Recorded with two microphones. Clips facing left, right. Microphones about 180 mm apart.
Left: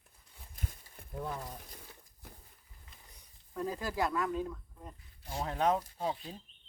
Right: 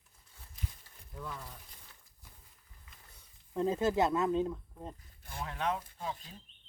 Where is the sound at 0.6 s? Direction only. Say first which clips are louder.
Left 1 dB; 50° left (ahead or behind).